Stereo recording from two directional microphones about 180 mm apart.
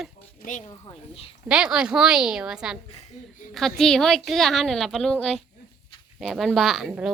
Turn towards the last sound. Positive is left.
turn(degrees=-5)  # may be behind; listen again after turning